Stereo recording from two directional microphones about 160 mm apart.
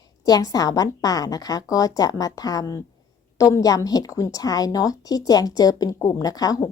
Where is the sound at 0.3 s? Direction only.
25° left (ahead or behind).